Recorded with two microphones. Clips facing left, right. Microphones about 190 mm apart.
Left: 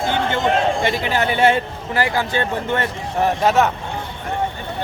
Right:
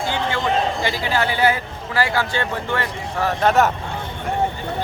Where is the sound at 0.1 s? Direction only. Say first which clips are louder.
Left 3 dB; 20° left (ahead or behind).